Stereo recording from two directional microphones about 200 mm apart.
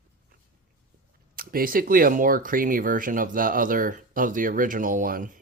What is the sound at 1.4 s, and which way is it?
Speech, 45° right (ahead or behind).